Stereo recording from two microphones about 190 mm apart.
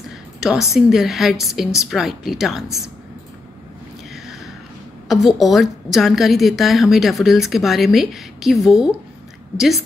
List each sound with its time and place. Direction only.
0.4 s a woman's voice: 5° right (ahead or behind)
5.0 s a woman's voice: centre (ahead or behind)